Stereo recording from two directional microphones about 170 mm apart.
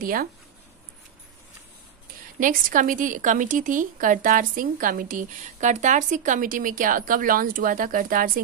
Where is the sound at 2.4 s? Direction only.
50° right (ahead or behind).